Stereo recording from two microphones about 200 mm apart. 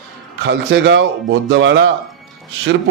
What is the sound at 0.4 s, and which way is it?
A man's voice, 60° right (ahead or behind).